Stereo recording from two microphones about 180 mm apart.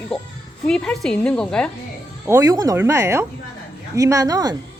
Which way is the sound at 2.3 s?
20° right (ahead or behind).